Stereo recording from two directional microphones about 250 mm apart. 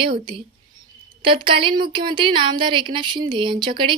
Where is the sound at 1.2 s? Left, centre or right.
Centre.